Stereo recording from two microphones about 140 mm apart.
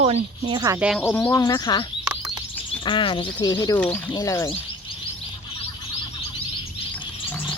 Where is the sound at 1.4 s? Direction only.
25° left (ahead or behind).